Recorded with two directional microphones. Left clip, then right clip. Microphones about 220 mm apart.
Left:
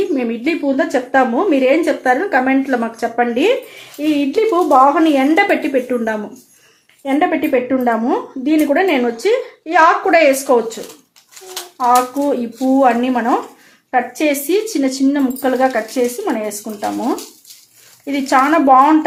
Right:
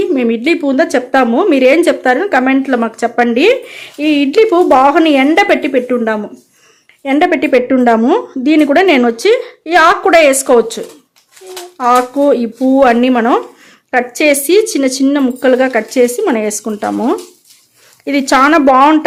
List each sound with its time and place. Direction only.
0.1 s a woman's voice: 40° right (ahead or behind)
11.8 s a woman's voice: 45° right (ahead or behind)
18.0 s a woman's voice: 45° right (ahead or behind)